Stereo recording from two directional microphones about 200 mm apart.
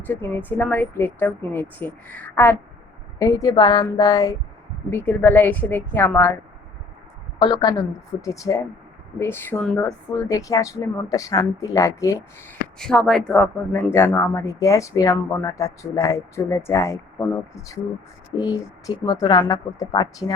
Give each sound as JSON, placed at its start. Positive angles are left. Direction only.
{"t": 0.0, "sound": "speech", "side_deg": 10}
{"t": 7.3, "sound": "speech", "side_deg": 20}
{"t": 12.8, "sound": "speech", "side_deg": 5}